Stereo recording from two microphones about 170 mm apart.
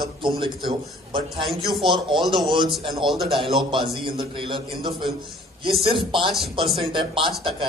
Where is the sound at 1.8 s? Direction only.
30° right (ahead or behind).